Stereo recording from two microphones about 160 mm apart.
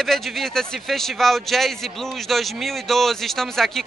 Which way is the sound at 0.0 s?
Centre (ahead or behind).